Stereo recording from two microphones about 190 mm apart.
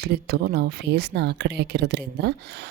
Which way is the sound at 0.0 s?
60° right (ahead or behind).